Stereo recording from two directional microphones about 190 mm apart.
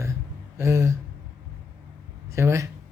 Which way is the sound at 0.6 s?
15° right (ahead or behind).